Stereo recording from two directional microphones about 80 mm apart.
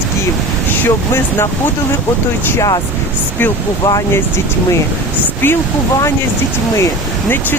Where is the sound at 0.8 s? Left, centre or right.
Left.